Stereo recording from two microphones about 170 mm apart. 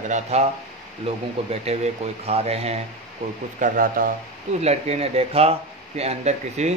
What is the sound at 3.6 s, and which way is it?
Speech, 55° right (ahead or behind).